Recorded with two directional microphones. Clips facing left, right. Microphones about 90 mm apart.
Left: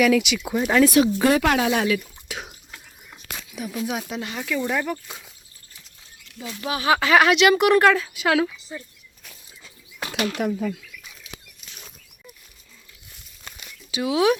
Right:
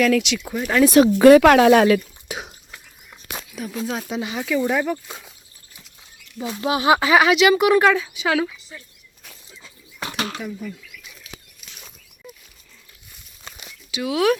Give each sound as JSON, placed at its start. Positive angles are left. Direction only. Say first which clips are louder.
{"t": 0.0, "sound": "speech", "louder": "even", "side_deg": 10}
{"t": 1.0, "sound": "speech", "louder": "right 9 dB", "side_deg": -70}
{"t": 4.0, "sound": "a woman's voice", "louder": "right 4 dB", "side_deg": -5}
{"t": 6.4, "sound": "speech", "louder": "right 5 dB", "side_deg": -30}
{"t": 7.1, "sound": "a woman's voice", "louder": "left 1 dB", "side_deg": -5}
{"t": 10.0, "sound": "a sound", "louder": "left 2 dB", "side_deg": -35}
{"t": 10.3, "sound": "speech", "louder": "left 6 dB", "side_deg": 80}
{"t": 13.4, "sound": "crumpling", "louder": "right 2 dB", "side_deg": -10}
{"t": 13.9, "sound": "speech", "louder": "even", "side_deg": 25}